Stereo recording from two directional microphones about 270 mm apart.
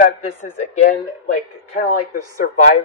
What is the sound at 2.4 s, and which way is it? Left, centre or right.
Speech, left.